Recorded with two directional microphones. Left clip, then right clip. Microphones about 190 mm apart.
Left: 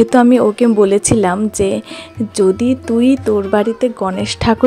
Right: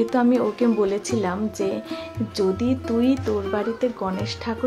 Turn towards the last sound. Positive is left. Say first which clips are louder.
# left 12 dB
turn(degrees=50)  # may be behind; listen again after turning